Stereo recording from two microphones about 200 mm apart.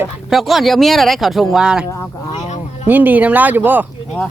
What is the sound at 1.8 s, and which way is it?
Speech, 15° left (ahead or behind).